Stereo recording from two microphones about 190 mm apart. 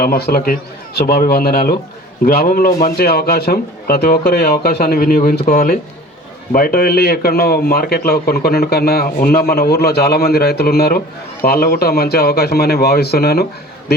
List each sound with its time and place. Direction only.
0.0 s a man's voice: 55° left (ahead or behind)